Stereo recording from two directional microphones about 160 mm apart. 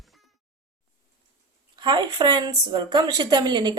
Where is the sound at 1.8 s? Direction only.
30° right (ahead or behind).